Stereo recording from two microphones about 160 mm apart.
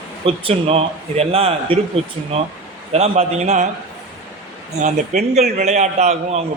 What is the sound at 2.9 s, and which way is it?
Speech, 40° right (ahead or behind).